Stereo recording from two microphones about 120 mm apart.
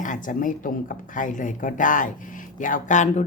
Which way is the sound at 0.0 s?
90° left.